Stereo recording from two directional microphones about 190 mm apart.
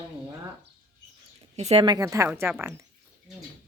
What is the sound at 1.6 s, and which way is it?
Speech, 35° right (ahead or behind).